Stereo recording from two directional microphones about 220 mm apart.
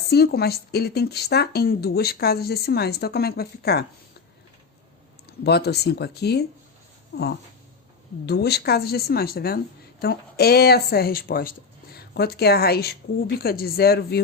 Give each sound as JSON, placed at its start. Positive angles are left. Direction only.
{"t": 0.1, "sound": "speech", "side_deg": 45}
{"t": 5.4, "sound": "speech", "side_deg": 50}
{"t": 8.3, "sound": "speech", "side_deg": 45}